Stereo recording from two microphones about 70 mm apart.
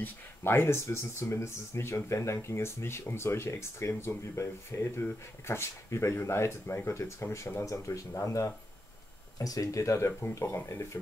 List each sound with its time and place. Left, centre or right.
0.0 s speech: left
7.6 s speech: left
9.4 s speech: left